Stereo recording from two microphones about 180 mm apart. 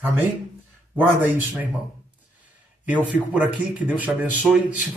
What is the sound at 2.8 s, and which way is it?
Speech, 10° right (ahead or behind).